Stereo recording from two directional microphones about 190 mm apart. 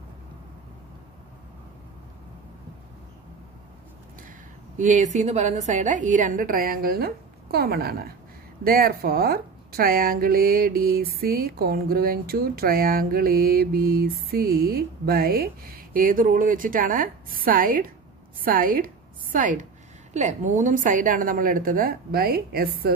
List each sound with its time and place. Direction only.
4.7 s a woman's voice: 40° right (ahead or behind)